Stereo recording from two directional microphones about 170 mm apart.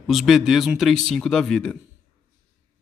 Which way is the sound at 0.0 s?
Centre (ahead or behind).